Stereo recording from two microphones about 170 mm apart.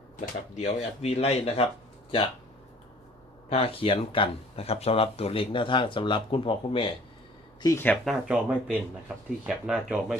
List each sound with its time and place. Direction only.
0.5 s speech: 40° left (ahead or behind)
3.5 s speech: 35° left (ahead or behind)
7.6 s speech: 15° left (ahead or behind)
8.0 s speech: 5° right (ahead or behind)